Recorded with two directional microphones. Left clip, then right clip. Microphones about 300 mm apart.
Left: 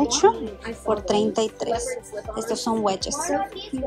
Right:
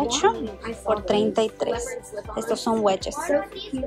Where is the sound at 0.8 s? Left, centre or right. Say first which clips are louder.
Even; centre.